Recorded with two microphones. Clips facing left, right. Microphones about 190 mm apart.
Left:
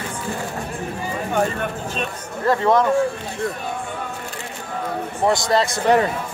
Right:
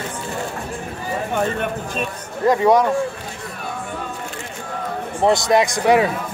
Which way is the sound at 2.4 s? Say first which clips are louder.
Right 2 dB; 15° right (ahead or behind).